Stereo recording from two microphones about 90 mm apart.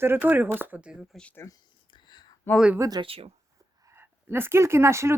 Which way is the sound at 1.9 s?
55° left (ahead or behind).